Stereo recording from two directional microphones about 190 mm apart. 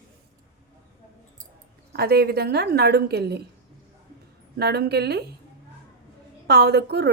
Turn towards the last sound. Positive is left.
turn(degrees=-60)  # may be behind; listen again after turning